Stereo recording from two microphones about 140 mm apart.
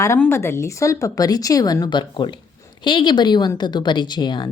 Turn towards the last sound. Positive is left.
turn(degrees=30)  # may be behind; listen again after turning